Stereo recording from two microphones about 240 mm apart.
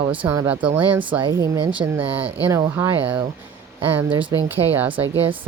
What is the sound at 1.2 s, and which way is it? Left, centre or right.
Speech, centre.